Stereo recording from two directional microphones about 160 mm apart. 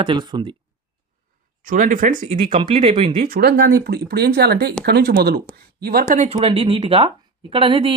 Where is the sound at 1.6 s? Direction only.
55° right (ahead or behind).